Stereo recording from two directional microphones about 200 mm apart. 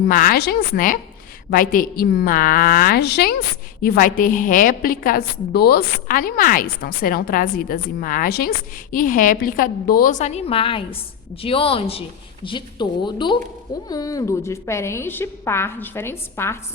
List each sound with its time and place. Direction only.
0.1 s a woman's voice: 45° left (ahead or behind); by 16.6 s 10° left (ahead or behind)